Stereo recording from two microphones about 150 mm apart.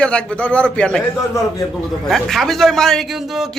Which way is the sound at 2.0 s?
Centre (ahead or behind).